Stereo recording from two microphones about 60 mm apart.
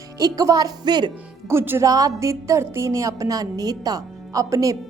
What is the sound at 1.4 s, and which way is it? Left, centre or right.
Speech, right.